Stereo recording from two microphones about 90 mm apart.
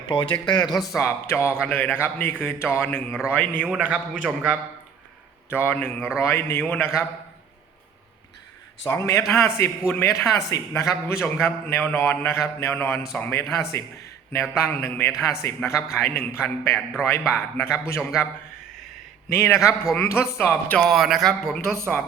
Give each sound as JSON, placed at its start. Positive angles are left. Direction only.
{"t": 0.0, "sound": "speech", "side_deg": 65}
{"t": 0.8, "sound": "a man's voice", "side_deg": 30}
{"t": 1.6, "sound": "a man's voice", "side_deg": 20}
{"t": 3.6, "sound": "a man's voice", "side_deg": -15}
{"t": 5.5, "sound": "a man's voice", "side_deg": 25}
{"t": 8.9, "sound": "a man's voice", "side_deg": 35}
{"t": 14.6, "sound": "a man's voice", "side_deg": 20}
{"t": 19.3, "sound": "a man's voice", "side_deg": 25}
{"t": 20.7, "sound": "speech", "side_deg": 5}